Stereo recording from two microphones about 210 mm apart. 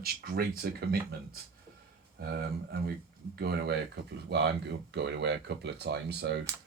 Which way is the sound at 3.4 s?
50° right (ahead or behind).